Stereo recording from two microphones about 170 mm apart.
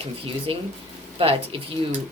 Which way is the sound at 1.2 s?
35° right (ahead or behind).